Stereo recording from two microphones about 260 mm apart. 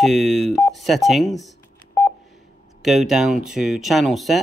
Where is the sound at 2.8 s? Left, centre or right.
Centre.